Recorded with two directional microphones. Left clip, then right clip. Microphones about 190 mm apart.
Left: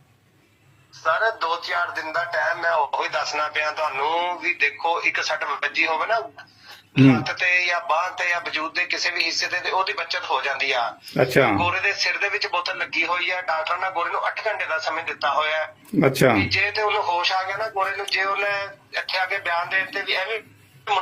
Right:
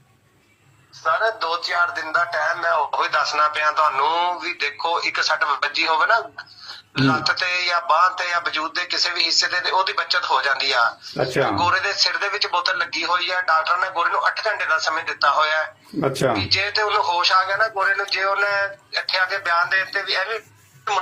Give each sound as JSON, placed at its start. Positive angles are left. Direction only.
{"t": 1.0, "sound": "speech", "side_deg": 0}
{"t": 11.2, "sound": "speech", "side_deg": 45}
{"t": 12.1, "sound": "speech", "side_deg": -10}
{"t": 16.0, "sound": "a man's voice", "side_deg": 40}
{"t": 16.6, "sound": "speech", "side_deg": 0}